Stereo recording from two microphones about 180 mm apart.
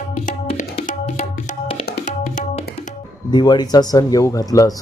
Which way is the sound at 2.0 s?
45° left (ahead or behind).